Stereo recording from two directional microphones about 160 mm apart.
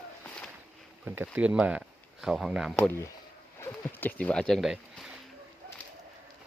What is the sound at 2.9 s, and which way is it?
Speech, 20° left (ahead or behind).